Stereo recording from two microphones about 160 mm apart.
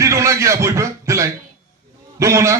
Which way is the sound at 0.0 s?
20° right (ahead or behind).